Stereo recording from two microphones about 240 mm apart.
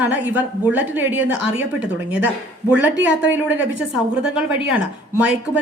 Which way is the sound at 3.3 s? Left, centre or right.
Centre.